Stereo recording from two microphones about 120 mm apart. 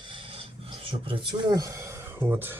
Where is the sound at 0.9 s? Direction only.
45° right (ahead or behind).